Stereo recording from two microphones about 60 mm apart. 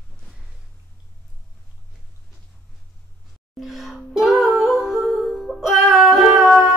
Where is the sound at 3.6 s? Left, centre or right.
Centre.